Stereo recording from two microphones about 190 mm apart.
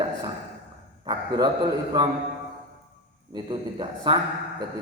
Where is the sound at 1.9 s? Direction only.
20° right (ahead or behind).